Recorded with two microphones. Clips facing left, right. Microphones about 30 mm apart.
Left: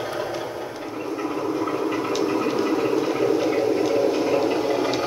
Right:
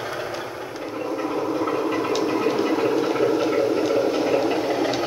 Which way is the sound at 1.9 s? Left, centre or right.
Centre.